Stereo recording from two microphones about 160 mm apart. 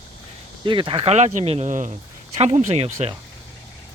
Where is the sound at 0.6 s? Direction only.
30° right (ahead or behind).